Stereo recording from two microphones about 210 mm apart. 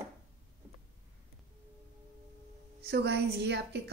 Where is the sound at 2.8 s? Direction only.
50° right (ahead or behind).